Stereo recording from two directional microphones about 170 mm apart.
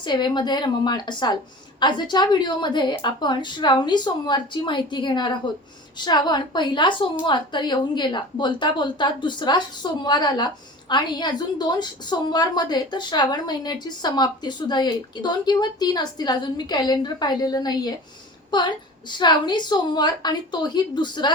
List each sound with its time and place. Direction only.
0.0 s a woman's voice: 25° left (ahead or behind)